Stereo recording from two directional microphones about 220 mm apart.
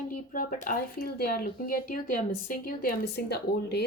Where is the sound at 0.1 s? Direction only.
40° left (ahead or behind).